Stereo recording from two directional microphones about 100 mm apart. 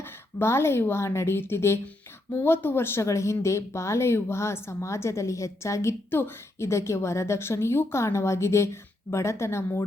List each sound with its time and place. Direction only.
0.0 s speech: 25° left (ahead or behind)